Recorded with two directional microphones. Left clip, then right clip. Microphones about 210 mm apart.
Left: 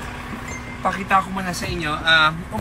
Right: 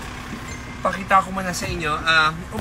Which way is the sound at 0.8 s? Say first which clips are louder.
Right 1 dB; centre (ahead or behind).